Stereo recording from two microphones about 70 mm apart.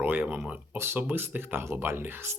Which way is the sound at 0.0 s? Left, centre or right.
Right.